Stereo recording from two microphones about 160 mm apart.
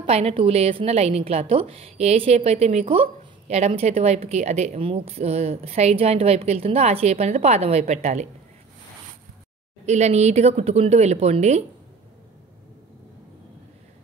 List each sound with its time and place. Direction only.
0.0 s a woman's voice: 40° right (ahead or behind)
9.8 s a woman's voice: 45° right (ahead or behind)